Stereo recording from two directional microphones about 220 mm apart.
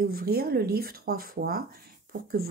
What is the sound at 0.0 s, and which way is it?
Speech, 45° right (ahead or behind).